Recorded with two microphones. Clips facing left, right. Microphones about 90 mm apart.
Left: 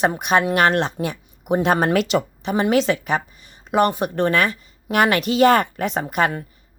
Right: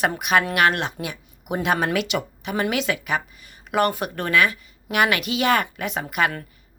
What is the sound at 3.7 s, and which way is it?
A woman's voice, 20° left (ahead or behind).